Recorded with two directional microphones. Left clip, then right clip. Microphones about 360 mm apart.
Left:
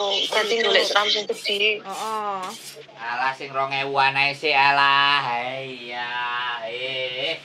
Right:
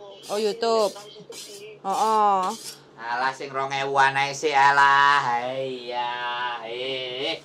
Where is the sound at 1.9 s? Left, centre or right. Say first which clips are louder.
Right 7 dB; right.